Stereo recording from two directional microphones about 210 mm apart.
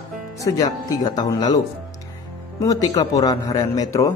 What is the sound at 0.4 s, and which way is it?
A man's voice, 15° left (ahead or behind).